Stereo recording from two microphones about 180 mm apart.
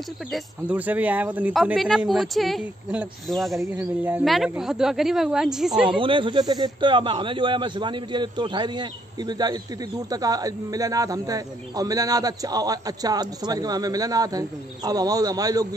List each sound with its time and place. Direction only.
0.3 s speech: 10° right (ahead or behind)
3.5 s speech: 10° right (ahead or behind)
5.9 s speech: 30° right (ahead or behind)